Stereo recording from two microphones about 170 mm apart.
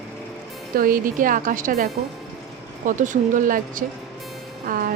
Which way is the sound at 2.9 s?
50° right (ahead or behind).